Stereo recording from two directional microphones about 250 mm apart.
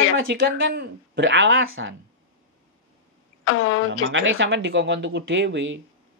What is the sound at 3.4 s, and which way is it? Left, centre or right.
Speech, left.